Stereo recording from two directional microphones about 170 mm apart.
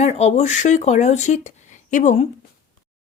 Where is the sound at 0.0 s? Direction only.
40° left (ahead or behind).